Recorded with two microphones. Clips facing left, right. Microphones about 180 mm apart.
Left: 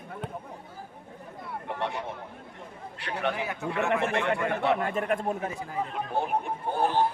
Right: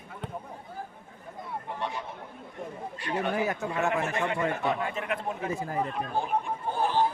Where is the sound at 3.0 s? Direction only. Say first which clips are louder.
Right 2 dB; 75° left (ahead or behind); by 5.5 s 45° left (ahead or behind).